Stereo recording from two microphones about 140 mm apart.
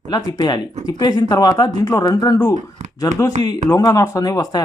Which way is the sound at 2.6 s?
55° right (ahead or behind).